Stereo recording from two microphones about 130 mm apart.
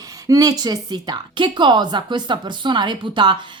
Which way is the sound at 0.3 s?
30° right (ahead or behind).